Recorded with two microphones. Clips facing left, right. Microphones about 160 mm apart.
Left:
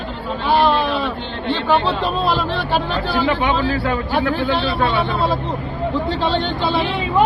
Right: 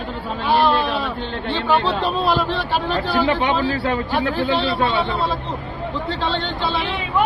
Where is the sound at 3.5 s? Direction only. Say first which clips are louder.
Left 1 dB; 30° right (ahead or behind).